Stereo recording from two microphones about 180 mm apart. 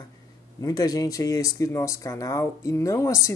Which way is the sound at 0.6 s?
20° left (ahead or behind).